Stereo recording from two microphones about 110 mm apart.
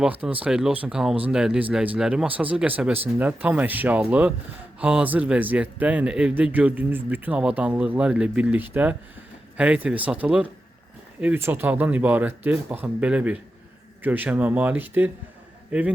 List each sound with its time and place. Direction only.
0.0 s speech: 15° right (ahead or behind)